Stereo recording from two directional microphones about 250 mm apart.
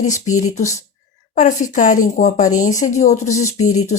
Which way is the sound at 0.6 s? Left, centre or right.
Centre.